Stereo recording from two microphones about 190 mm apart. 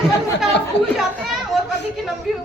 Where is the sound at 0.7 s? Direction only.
65° left (ahead or behind).